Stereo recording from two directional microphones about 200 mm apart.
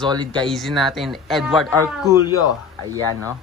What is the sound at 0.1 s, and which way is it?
Speech, 20° right (ahead or behind).